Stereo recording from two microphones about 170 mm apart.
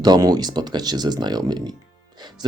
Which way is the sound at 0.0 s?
25° right (ahead or behind).